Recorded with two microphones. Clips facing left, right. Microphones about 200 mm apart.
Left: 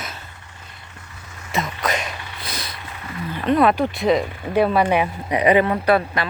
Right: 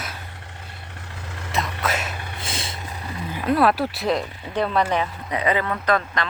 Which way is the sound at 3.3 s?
5° right (ahead or behind).